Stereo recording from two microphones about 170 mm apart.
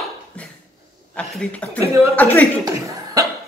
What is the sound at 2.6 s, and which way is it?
Speech, 20° right (ahead or behind).